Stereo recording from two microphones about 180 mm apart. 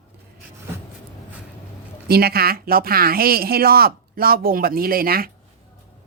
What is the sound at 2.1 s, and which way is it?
Speech, 60° right (ahead or behind).